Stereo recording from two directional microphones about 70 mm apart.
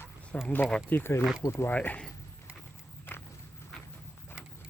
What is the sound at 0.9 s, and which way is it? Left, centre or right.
Speech, left.